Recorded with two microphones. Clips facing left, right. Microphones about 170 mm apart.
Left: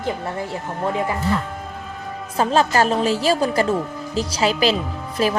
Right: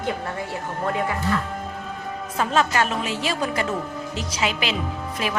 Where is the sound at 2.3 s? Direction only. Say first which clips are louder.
Left 4 dB; 35° left (ahead or behind).